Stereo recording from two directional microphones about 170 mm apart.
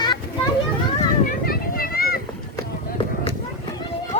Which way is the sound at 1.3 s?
60° left (ahead or behind).